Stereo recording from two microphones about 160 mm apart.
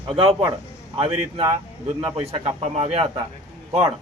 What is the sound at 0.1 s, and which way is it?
A man's voice, 35° right (ahead or behind).